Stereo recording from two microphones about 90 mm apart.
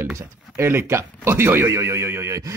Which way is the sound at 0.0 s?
30° right (ahead or behind).